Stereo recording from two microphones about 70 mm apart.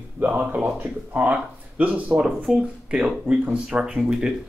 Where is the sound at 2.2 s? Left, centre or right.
Centre.